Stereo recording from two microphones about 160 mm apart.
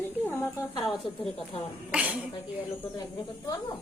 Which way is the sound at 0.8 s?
Centre (ahead or behind).